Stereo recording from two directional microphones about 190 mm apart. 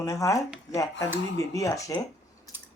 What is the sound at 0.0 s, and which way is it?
Speech, 15° left (ahead or behind).